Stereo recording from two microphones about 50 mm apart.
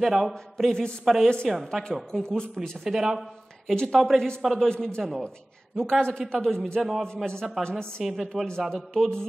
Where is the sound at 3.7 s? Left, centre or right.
Centre.